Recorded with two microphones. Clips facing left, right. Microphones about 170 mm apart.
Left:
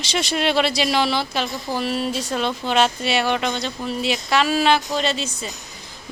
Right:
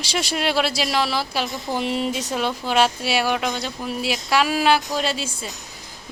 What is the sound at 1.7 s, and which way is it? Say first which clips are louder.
Speech: right 1 dB; 20° right (ahead or behind).